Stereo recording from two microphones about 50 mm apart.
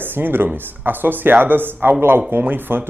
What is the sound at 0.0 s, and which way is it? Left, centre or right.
Speech, right.